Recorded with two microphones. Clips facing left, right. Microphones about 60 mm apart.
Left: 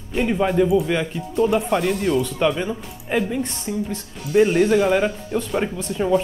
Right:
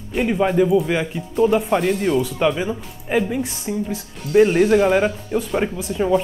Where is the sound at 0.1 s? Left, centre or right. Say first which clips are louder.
Right 1 dB; centre.